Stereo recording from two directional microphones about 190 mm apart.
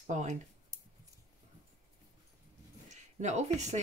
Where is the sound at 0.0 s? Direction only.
40° right (ahead or behind).